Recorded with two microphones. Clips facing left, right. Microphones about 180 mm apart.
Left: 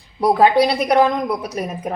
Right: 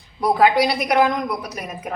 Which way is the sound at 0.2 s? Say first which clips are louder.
Left 3 dB; 30° left (ahead or behind).